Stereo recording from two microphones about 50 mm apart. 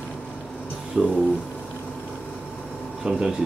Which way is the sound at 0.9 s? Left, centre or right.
Centre.